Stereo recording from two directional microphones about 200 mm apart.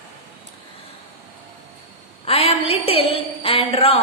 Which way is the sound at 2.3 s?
30° left (ahead or behind).